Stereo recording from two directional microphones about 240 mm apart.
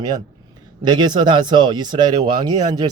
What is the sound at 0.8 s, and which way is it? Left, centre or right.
A man's voice, centre.